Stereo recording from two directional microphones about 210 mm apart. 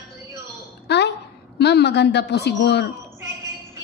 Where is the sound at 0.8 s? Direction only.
55° left (ahead or behind).